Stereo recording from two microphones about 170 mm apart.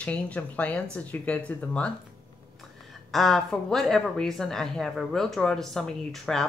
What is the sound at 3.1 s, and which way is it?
Speech, centre (ahead or behind).